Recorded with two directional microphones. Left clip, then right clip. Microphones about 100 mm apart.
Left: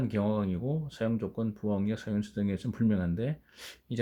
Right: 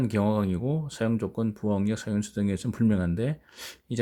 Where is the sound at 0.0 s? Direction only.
55° right (ahead or behind).